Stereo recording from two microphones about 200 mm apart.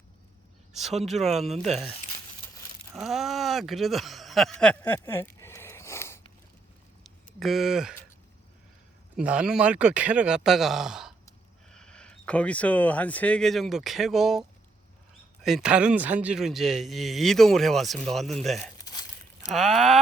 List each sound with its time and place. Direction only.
0.7 s speech: centre (ahead or behind)
1.5 s speech: 35° right (ahead or behind)
2.9 s speech: centre (ahead or behind)
7.0 s a sound: centre (ahead or behind)
9.1 s speech: 5° right (ahead or behind)
15.4 s speech: 5° right (ahead or behind)